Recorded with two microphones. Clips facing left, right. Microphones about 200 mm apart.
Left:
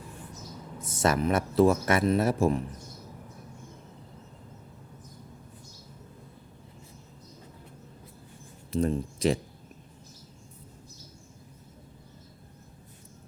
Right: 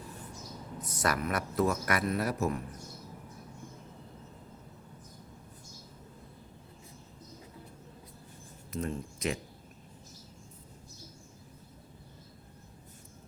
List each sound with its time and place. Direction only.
0.8 s speech: 25° left (ahead or behind)
8.7 s speech: 30° left (ahead or behind)